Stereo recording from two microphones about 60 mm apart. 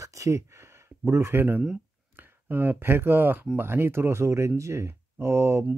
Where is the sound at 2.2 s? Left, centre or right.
Right.